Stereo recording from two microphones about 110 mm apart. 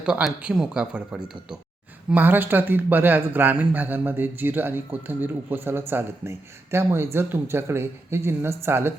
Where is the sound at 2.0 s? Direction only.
15° right (ahead or behind).